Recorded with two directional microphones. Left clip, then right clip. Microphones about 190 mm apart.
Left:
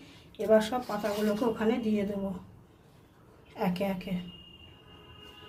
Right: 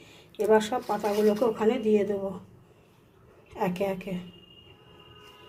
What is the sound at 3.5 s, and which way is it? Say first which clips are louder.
Speech: right 3 dB; 20° right (ahead or behind).